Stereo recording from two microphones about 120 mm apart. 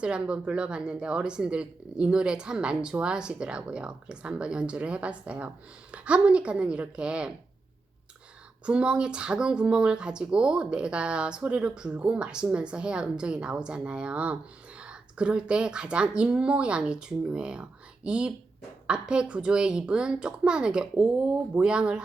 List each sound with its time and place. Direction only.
0.0 s a woman's voice: 10° right (ahead or behind)
8.6 s a woman's voice: 10° right (ahead or behind)